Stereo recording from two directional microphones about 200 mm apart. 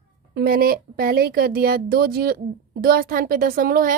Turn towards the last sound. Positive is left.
turn(degrees=-45)  # may be behind; listen again after turning